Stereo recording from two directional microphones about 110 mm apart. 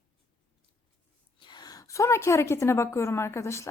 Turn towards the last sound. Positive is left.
turn(degrees=25)  # may be behind; listen again after turning